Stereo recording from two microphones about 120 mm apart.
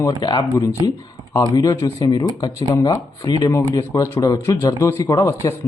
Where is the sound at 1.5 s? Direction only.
30° left (ahead or behind).